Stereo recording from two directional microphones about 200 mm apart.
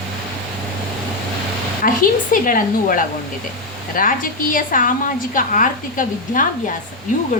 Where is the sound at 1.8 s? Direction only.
45° left (ahead or behind).